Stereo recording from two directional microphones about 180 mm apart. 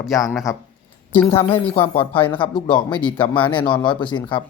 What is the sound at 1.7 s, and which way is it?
Speech, 30° left (ahead or behind).